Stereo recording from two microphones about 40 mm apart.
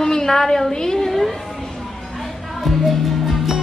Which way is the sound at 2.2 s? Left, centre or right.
Centre.